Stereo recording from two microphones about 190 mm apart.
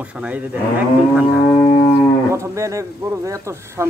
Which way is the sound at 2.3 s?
15° right (ahead or behind).